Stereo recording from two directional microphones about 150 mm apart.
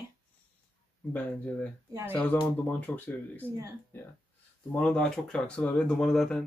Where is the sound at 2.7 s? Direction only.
10° left (ahead or behind).